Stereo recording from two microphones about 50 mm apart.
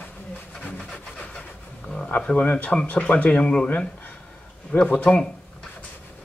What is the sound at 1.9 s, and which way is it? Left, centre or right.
Speech, left.